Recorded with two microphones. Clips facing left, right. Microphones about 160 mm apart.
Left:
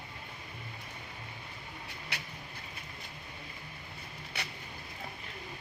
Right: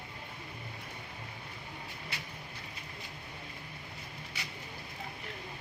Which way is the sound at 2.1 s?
70° left (ahead or behind).